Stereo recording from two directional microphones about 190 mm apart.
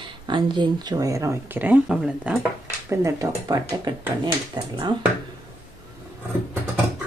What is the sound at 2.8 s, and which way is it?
Speech, 15° right (ahead or behind).